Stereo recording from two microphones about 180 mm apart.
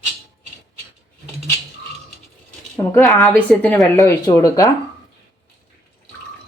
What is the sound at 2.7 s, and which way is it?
Speech, 15° left (ahead or behind).